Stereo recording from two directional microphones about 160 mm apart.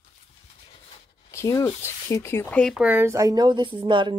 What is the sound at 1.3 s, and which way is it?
Speech, 20° left (ahead or behind).